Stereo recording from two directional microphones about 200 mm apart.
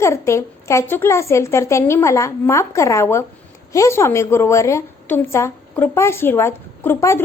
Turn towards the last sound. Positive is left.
turn(degrees=15)  # may be behind; listen again after turning